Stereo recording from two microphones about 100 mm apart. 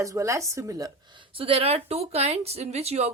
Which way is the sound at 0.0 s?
30° right (ahead or behind).